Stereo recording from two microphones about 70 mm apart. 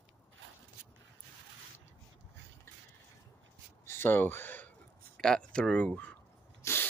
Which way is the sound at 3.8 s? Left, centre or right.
Left.